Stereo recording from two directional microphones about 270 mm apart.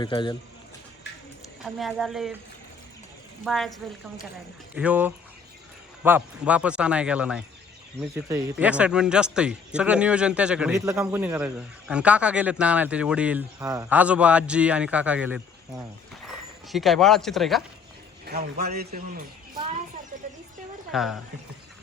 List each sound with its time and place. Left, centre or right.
0.0 s a man's voice: centre
1.6 s a man's voice: centre
3.4 s a man's voice: centre
18.6 s a man's voice: right
20.9 s a man's voice: centre